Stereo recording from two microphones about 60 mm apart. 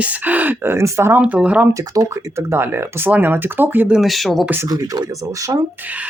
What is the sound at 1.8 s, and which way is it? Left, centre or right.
Speech, right.